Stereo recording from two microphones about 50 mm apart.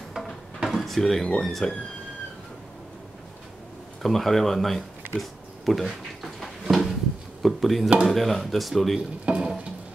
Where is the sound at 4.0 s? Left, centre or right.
Centre.